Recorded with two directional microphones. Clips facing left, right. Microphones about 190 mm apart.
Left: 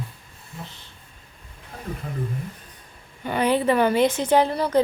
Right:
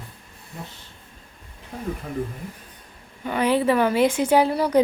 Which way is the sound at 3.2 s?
Centre (ahead or behind).